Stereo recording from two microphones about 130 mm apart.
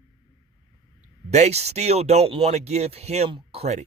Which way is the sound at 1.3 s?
55° right (ahead or behind).